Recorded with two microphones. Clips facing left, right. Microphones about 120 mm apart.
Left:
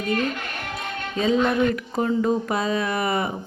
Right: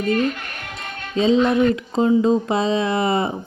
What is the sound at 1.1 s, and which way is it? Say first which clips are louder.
Speech: right 4 dB; 25° right (ahead or behind).